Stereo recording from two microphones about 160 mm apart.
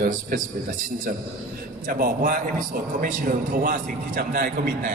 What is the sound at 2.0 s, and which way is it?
A man's voice, 60° right (ahead or behind).